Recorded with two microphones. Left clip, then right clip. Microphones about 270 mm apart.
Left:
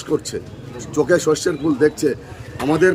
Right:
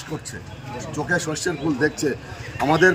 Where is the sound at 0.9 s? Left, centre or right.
Centre.